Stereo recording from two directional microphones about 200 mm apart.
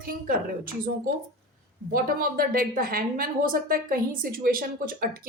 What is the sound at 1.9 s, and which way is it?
A woman's voice, 45° right (ahead or behind).